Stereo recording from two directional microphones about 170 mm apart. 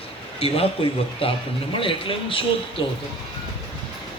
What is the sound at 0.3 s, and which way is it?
A man's voice, 35° left (ahead or behind).